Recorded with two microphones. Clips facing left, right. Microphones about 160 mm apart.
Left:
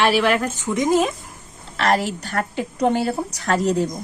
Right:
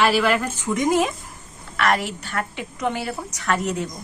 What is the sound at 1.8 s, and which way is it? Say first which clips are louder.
A woman's voice: left 2 dB; 35° left (ahead or behind).